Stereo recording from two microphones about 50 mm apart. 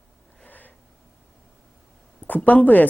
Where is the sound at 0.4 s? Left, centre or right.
Left.